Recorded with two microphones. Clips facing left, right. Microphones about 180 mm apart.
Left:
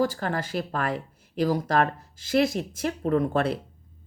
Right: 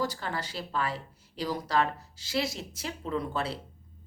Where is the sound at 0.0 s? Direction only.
50° left (ahead or behind).